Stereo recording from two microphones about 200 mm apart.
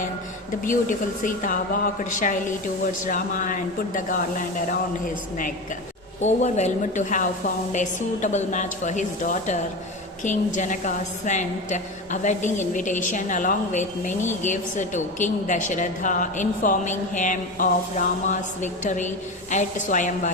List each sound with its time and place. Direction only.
0.6 s a woman's voice: 40° left (ahead or behind)